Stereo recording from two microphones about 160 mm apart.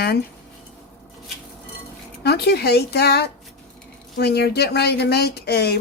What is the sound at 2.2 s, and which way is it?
Speech, 85° left.